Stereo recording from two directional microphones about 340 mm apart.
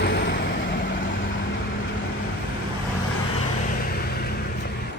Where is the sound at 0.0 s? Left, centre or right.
Left.